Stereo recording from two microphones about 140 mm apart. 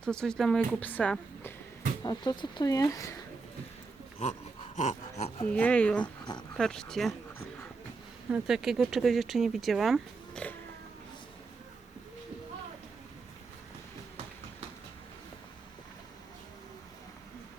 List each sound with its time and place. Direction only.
0.0 s speech: 5° left (ahead or behind)
2.0 s speech: 30° left (ahead or behind)
4.8 s speech: 50° left (ahead or behind)
5.5 s speech: 10° left (ahead or behind)
6.0 s speech: 30° left (ahead or behind)
6.6 s speech: 5° left (ahead or behind)
8.3 s speech: 5° right (ahead or behind)